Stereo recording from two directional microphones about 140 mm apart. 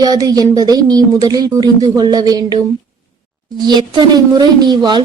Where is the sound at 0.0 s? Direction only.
25° right (ahead or behind).